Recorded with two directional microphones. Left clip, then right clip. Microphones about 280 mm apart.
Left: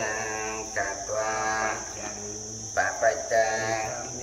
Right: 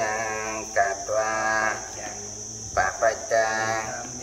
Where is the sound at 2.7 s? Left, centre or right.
Centre.